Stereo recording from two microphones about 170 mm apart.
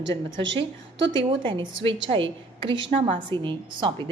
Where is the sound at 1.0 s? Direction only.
90° right.